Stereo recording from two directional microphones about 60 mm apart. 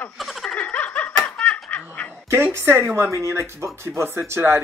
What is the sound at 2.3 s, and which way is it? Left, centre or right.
Speech, right.